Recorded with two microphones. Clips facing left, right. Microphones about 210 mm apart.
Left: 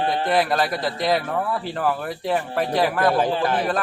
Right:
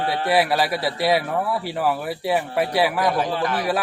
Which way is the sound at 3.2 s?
30° left (ahead or behind).